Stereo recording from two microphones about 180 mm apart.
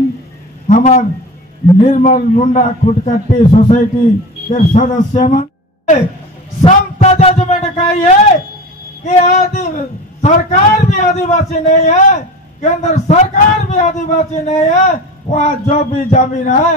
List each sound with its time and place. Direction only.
0.7 s a man's voice: 45° left (ahead or behind)
6.6 s a sound: 35° left (ahead or behind)
9.0 s a man's voice: 40° left (ahead or behind)